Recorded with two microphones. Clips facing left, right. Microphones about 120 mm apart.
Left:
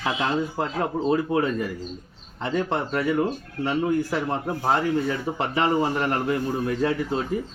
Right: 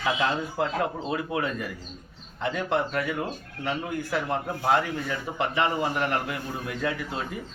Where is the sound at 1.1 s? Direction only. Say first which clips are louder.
Left 6 dB; 35° left (ahead or behind).